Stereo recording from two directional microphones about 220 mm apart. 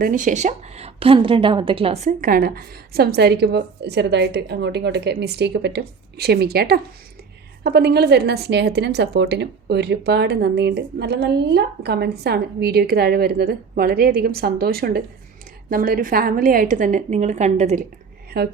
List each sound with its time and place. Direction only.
0.0 s a woman's voice: 35° right (ahead or behind)